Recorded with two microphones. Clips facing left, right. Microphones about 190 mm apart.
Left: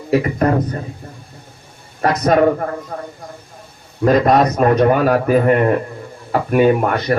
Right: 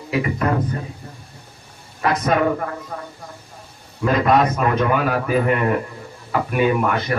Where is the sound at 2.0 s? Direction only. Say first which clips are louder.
Left 5 dB; 40° left (ahead or behind).